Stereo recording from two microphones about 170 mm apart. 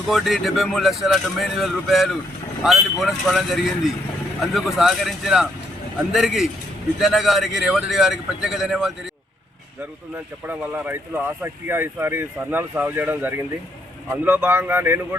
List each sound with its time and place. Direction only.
0.1 s speech: centre (ahead or behind)
10.5 s speech: 10° right (ahead or behind)